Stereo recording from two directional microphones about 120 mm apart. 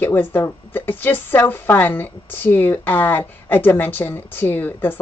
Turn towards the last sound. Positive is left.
turn(degrees=15)  # may be behind; listen again after turning